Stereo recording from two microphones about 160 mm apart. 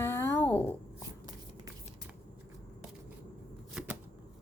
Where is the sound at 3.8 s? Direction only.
5° right (ahead or behind).